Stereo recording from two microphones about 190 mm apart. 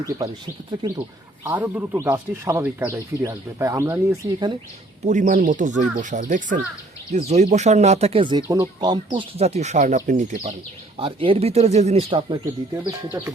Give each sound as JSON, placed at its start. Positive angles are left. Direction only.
{"t": 0.0, "sound": "speech", "side_deg": -15}
{"t": 1.5, "sound": "speech", "side_deg": -10}
{"t": 5.0, "sound": "speech", "side_deg": -45}
{"t": 10.9, "sound": "speech", "side_deg": -30}
{"t": 12.8, "sound": "speech", "side_deg": -10}